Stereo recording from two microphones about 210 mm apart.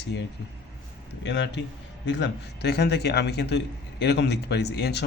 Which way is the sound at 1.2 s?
55° left (ahead or behind).